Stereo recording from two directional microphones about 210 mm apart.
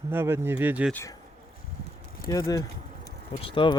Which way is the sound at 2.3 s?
15° left (ahead or behind).